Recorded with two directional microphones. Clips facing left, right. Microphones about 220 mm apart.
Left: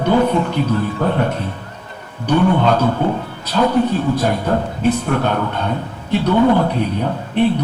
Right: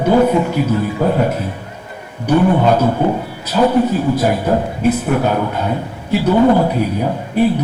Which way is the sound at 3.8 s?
5° right (ahead or behind).